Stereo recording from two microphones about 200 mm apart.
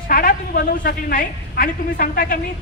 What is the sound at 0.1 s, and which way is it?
A man's voice, 45° left (ahead or behind).